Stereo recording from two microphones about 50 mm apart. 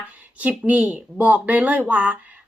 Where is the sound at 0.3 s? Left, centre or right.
Right.